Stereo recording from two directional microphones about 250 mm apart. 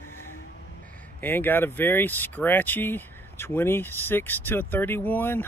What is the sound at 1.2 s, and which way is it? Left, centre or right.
Speech, centre.